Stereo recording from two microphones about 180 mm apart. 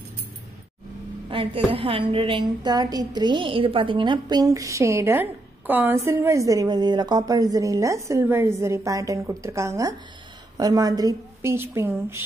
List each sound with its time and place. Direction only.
1.3 s a woman's voice: 30° right (ahead or behind); by 12.2 s 15° right (ahead or behind)